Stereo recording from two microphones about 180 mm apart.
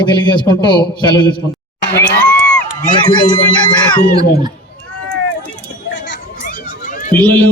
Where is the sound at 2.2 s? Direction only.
5° left (ahead or behind).